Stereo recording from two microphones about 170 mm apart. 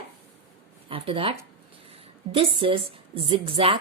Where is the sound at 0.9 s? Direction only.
30° right (ahead or behind).